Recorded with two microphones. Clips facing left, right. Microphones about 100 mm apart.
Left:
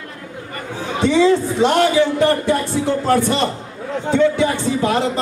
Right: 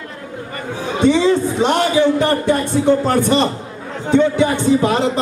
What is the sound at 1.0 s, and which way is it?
A man's voice, 20° right (ahead or behind).